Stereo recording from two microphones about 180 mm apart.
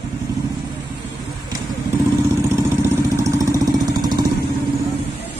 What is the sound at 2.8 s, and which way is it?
Vehicle, 15° right (ahead or behind).